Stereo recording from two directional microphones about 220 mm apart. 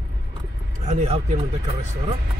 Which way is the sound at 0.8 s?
30° right (ahead or behind).